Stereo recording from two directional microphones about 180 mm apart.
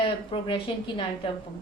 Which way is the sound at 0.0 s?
30° left (ahead or behind).